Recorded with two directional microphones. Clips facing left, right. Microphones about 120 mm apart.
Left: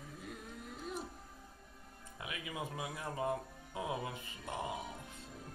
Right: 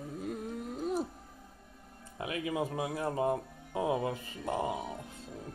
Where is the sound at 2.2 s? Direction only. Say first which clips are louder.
Right 10 dB; 40° right (ahead or behind).